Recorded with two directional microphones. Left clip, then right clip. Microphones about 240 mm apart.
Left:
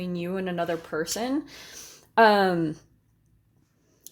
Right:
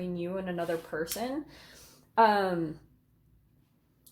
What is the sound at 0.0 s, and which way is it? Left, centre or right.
Speech, left.